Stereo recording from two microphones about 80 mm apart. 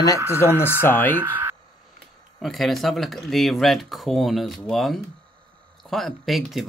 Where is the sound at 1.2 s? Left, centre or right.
Right.